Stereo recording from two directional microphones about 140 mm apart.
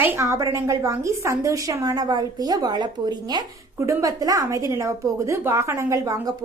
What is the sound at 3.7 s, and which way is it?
A woman's voice, 20° right (ahead or behind).